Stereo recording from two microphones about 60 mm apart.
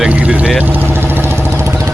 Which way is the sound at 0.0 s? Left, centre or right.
Right.